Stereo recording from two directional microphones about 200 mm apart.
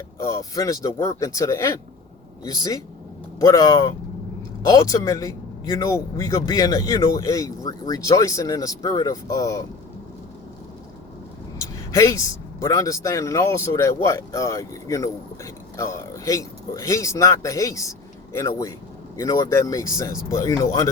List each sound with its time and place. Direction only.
0.2 s speech: 15° left (ahead or behind)
11.6 s speech: 15° left (ahead or behind)